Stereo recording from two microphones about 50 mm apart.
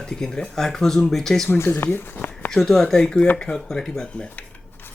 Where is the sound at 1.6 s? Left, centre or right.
Left.